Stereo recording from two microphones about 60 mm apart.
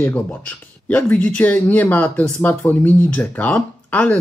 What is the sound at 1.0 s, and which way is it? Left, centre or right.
Speech, left.